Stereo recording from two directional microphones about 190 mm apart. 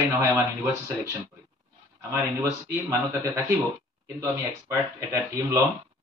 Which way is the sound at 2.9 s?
15° right (ahead or behind).